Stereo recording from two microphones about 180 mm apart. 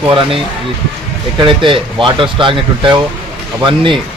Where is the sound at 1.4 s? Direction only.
30° right (ahead or behind).